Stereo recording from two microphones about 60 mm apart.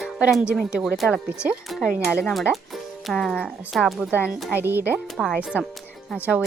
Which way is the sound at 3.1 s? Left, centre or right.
Centre.